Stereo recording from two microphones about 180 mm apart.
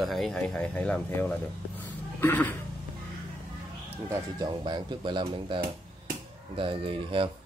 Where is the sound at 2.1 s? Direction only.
10° left (ahead or behind).